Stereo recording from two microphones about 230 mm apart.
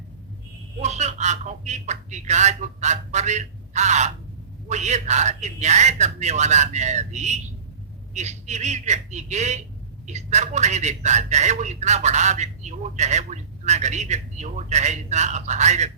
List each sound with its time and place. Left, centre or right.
0.8 s a man's voice: right